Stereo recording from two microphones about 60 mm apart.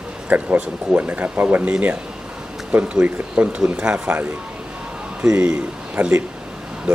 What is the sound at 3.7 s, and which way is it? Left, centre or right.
Speech, centre.